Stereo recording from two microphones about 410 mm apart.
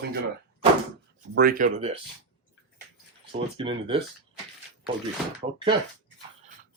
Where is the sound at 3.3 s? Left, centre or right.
Centre.